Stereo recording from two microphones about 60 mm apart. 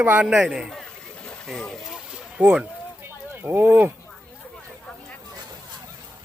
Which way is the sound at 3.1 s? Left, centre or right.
Right.